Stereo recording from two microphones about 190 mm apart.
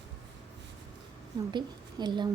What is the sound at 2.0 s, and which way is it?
Speech, 25° right (ahead or behind).